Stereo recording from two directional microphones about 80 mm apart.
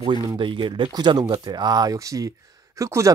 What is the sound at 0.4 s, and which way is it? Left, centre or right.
Speech, right.